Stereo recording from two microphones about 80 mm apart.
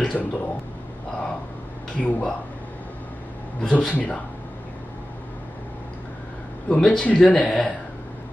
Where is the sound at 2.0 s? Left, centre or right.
Centre.